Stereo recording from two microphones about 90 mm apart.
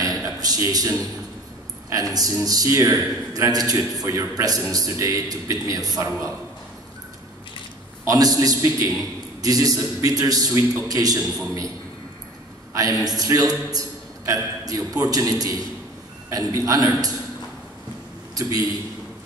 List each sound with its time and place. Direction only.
0.0 s a sound: 40° right (ahead or behind)
0.7 s a man's voice: 45° right (ahead or behind)
8.0 s a man's voice: 40° right (ahead or behind)
12.7 s a man's voice: 40° right (ahead or behind)